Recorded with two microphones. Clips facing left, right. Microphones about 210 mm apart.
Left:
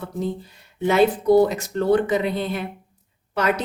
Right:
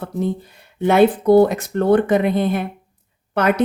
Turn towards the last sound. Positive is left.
turn(degrees=-55)  # may be behind; listen again after turning